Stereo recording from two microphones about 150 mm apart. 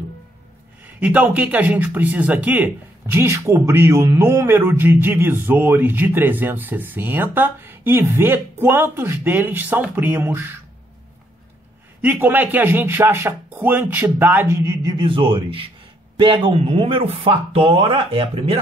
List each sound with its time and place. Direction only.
0.8 s speech: 10° right (ahead or behind)
12.0 s a man's voice: 10° right (ahead or behind); by 18.6 s 40° right (ahead or behind)